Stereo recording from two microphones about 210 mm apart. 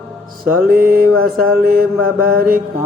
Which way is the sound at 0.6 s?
45° right (ahead or behind).